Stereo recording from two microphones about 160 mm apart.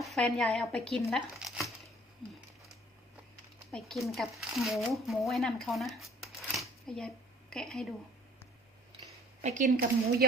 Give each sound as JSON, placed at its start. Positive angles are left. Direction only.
{"t": 0.0, "sound": "speech", "side_deg": 0}
{"t": 3.7, "sound": "a woman's voice", "side_deg": 0}
{"t": 9.4, "sound": "speech", "side_deg": -50}